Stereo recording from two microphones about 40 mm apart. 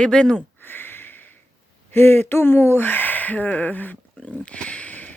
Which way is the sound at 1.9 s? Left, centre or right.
Left.